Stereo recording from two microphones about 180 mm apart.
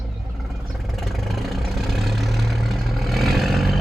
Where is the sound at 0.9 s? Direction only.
Centre (ahead or behind).